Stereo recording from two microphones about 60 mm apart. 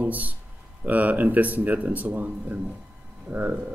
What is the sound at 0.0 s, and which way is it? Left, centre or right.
A man's voice, right.